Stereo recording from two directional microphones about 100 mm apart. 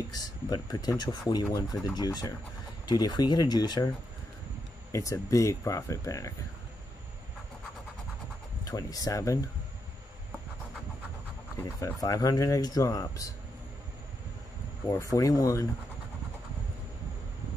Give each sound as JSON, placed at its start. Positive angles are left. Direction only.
{"t": 0.2, "sound": "speech", "side_deg": 40}
{"t": 4.9, "sound": "speech", "side_deg": 35}
{"t": 8.6, "sound": "speech", "side_deg": 35}
{"t": 11.6, "sound": "speech", "side_deg": 35}
{"t": 14.9, "sound": "speech", "side_deg": 35}